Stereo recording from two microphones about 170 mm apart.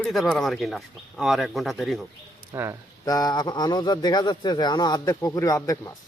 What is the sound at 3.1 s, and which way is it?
Speech, 20° left (ahead or behind).